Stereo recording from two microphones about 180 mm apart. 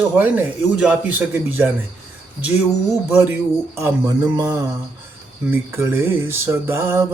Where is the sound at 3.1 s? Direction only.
10° right (ahead or behind).